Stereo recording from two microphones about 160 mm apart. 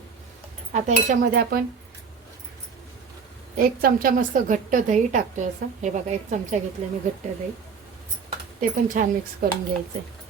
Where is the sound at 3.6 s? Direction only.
65° right (ahead or behind); by 6.5 s 50° right (ahead or behind).